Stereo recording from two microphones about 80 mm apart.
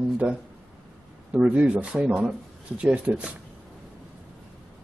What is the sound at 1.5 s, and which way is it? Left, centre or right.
Speech, centre.